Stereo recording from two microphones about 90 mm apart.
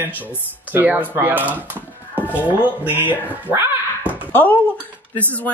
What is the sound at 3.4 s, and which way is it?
Dog, 20° right (ahead or behind).